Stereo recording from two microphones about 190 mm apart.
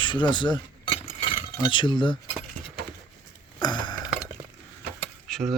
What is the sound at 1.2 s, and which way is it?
Cutlery, 25° left (ahead or behind).